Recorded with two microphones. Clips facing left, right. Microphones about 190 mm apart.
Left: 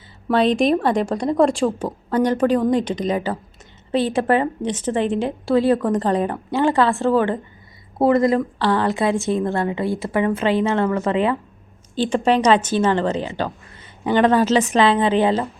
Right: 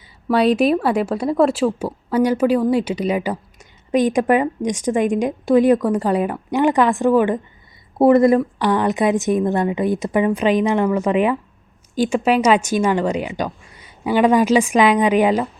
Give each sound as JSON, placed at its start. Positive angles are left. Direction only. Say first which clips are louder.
{"t": 0.3, "sound": "a woman's voice", "louder": "right 1 dB", "side_deg": -5}
{"t": 8.0, "sound": "a woman's voice", "louder": "right 4 dB", "side_deg": -25}